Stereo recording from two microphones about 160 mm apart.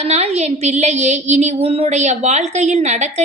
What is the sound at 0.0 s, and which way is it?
A woman's voice, 45° right (ahead or behind).